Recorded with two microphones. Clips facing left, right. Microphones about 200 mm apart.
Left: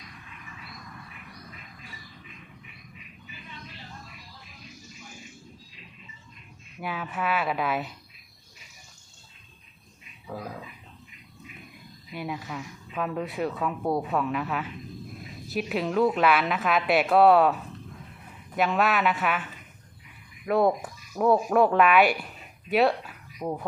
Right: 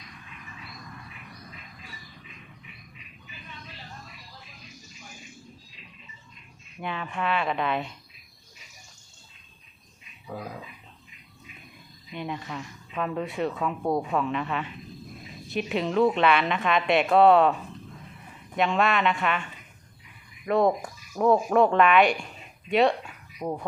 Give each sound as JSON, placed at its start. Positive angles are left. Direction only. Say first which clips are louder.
{"t": 6.7, "sound": "speech", "louder": "even", "side_deg": 5}
{"t": 10.2, "sound": "a sound", "louder": "even", "side_deg": -5}
{"t": 12.1, "sound": "speech", "louder": "even", "side_deg": 5}